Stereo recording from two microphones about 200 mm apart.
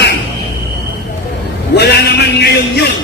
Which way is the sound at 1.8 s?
55° left (ahead or behind).